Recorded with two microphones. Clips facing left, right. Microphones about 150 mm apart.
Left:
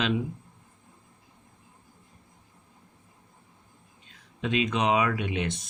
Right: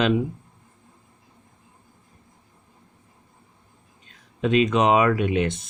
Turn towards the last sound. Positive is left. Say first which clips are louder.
# right 8 dB
turn(degrees=-50)  # may be behind; listen again after turning